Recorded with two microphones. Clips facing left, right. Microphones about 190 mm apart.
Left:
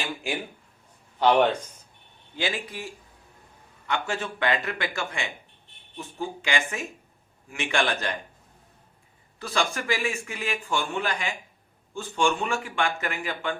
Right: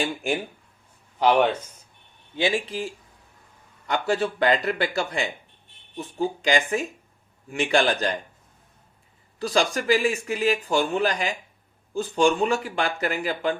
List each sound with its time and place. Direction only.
1.2 s speech: 10° right (ahead or behind)
2.3 s speech: 25° right (ahead or behind)
9.4 s speech: 35° right (ahead or behind)